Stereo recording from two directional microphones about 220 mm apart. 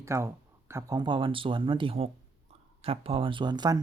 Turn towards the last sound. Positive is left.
turn(degrees=-20)  # may be behind; listen again after turning